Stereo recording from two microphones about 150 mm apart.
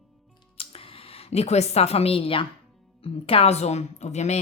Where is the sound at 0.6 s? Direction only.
40° left (ahead or behind).